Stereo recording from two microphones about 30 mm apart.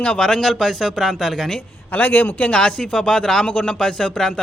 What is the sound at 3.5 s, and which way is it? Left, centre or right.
Speech, left.